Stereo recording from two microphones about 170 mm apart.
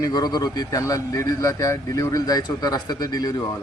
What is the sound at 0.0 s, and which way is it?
Speech, 25° left (ahead or behind).